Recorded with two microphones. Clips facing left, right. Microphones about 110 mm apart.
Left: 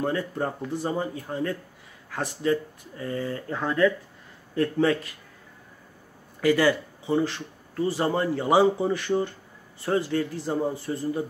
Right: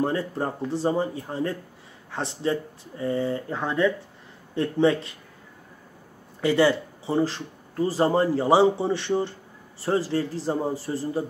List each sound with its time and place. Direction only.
0.0 s speech: 30° right (ahead or behind)
6.4 s speech: 25° right (ahead or behind)